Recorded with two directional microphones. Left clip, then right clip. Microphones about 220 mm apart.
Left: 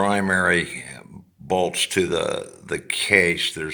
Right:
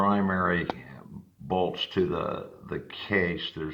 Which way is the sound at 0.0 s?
90° left.